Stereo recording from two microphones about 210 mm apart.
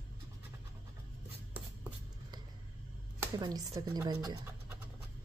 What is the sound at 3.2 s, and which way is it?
Speech, 20° right (ahead or behind).